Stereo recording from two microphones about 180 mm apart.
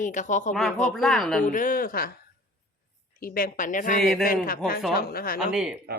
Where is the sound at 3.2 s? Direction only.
50° left (ahead or behind).